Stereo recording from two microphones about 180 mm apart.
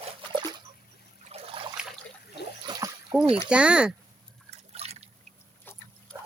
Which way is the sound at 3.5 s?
5° right (ahead or behind).